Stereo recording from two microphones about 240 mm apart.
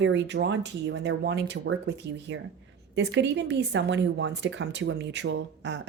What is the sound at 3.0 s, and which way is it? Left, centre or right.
Speech, right.